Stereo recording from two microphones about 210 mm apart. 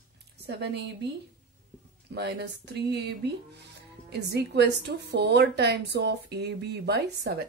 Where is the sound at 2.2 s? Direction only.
50° right (ahead or behind).